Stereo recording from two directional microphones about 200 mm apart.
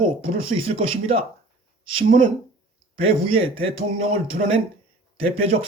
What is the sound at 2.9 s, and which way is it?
Speech, 30° right (ahead or behind).